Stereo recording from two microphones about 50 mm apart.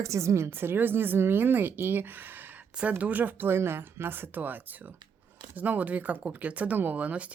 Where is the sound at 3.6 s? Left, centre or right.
Right.